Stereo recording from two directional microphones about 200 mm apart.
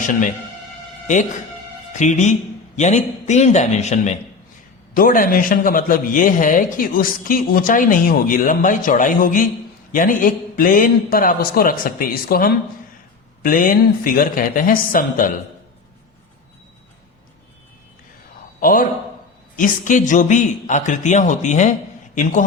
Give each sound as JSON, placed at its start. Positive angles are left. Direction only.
{"t": 1.9, "sound": "a man's voice", "side_deg": 35}
{"t": 18.6, "sound": "a man's voice", "side_deg": 45}